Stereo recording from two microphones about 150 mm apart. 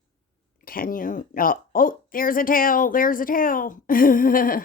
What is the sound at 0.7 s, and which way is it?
Speech, 70° left (ahead or behind).